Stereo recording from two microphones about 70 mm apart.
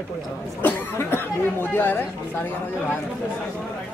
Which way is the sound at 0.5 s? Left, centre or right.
Left.